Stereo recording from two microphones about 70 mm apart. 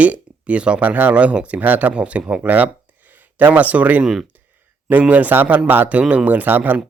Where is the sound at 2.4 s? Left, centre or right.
Right.